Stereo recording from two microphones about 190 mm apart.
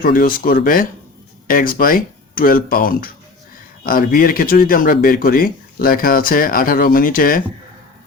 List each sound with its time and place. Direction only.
0.0 s speech: 50° left (ahead or behind)